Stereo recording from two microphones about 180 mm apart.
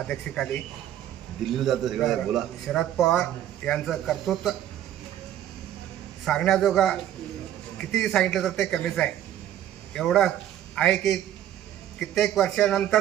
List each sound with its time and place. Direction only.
0.1 s a man's voice: 5° left (ahead or behind)
6.2 s a man's voice: 5° left (ahead or behind)